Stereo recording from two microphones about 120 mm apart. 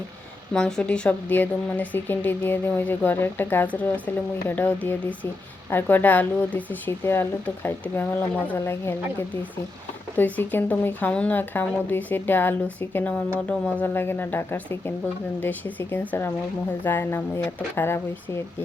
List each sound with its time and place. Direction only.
0.5 s speech: 5° left (ahead or behind)